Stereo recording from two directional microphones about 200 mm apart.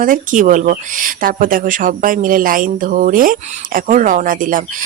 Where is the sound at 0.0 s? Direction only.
40° right (ahead or behind).